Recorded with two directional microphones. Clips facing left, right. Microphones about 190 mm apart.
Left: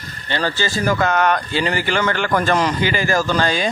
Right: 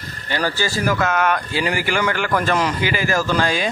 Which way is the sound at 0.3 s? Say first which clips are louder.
Left 1 dB; 10° right (ahead or behind).